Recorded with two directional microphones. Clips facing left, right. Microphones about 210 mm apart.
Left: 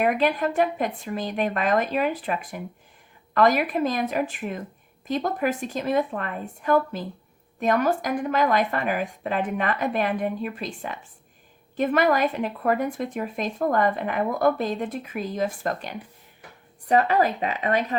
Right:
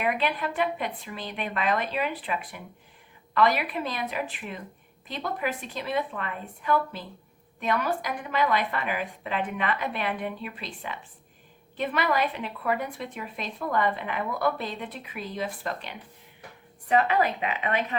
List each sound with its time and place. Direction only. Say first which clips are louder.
0.0 s speech: left 6 dB; 45° left (ahead or behind)